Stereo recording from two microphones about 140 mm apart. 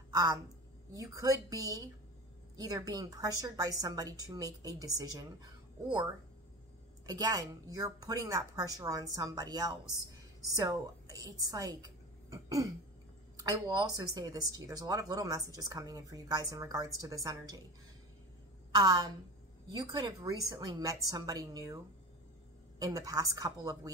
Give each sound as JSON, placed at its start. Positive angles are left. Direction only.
{"t": 0.1, "sound": "a woman's voice", "side_deg": -25}
{"t": 7.1, "sound": "a woman's voice", "side_deg": -25}
{"t": 18.7, "sound": "a woman's voice", "side_deg": -30}